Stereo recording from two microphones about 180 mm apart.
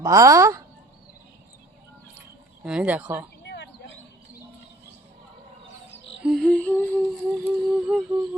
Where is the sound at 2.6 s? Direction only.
5° right (ahead or behind).